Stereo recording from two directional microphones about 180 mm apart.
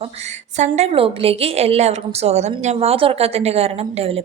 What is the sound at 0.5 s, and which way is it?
A woman's voice, 40° right (ahead or behind).